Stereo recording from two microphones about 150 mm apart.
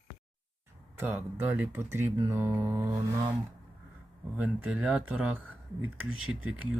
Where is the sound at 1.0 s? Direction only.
15° right (ahead or behind).